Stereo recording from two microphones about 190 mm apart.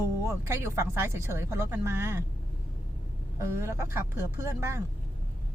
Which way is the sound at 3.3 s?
15° right (ahead or behind).